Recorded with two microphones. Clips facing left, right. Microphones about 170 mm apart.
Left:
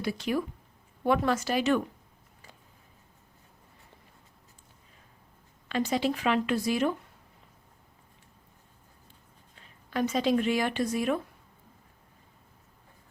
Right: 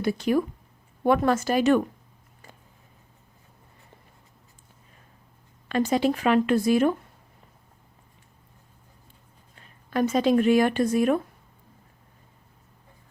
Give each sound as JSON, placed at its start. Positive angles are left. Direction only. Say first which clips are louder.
{"t": 0.0, "sound": "speech", "louder": "right 6 dB", "side_deg": -45}
{"t": 5.6, "sound": "speech", "louder": "right 5 dB", "side_deg": -50}
{"t": 9.6, "sound": "speech", "louder": "right 5 dB", "side_deg": -50}